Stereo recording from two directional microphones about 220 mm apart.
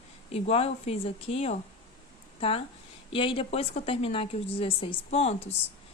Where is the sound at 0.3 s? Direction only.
25° left (ahead or behind).